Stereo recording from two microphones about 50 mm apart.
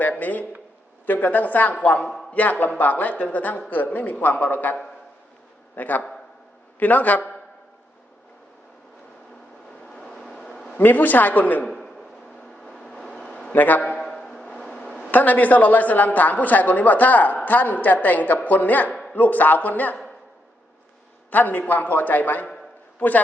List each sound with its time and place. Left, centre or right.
0.2 s a woman's voice: left
9.8 s vehicle: centre
10.8 s a woman's voice: left
11.6 s a sound: centre
12.4 s vehicle: centre
13.5 s a woman's voice: left
14.2 s a sound: centre
15.1 s a woman's voice: left
21.2 s a man's voice: left